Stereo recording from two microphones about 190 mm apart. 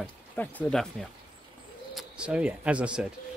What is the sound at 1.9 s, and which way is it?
Speech, 5° right (ahead or behind).